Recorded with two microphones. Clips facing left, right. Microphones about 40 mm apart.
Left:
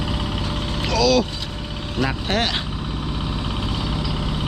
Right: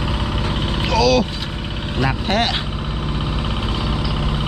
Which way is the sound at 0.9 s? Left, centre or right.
Centre.